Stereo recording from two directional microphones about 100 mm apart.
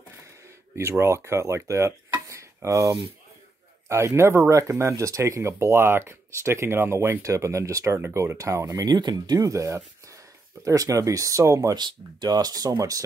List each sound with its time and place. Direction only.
0.7 s speech: 25° right (ahead or behind)
11.7 s speech: 45° right (ahead or behind)